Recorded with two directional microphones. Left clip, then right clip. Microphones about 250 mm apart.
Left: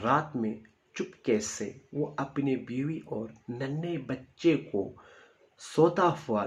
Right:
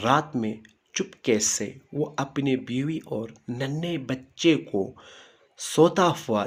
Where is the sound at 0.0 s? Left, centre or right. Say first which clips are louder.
Right 5 dB; right.